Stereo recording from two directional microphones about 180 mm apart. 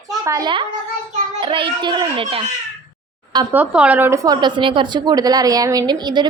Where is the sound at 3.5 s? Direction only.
10° right (ahead or behind); by 6.2 s 25° right (ahead or behind).